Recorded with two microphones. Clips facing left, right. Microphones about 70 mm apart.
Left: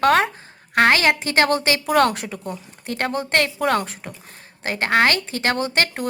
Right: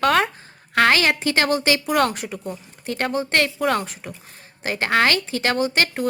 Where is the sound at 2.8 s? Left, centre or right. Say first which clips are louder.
Right 1 dB; left.